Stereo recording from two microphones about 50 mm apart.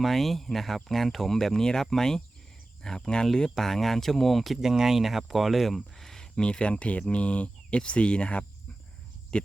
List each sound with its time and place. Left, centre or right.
0.0 s speech: centre